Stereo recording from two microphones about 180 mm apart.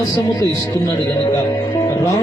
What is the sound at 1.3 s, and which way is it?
Music, 15° left (ahead or behind).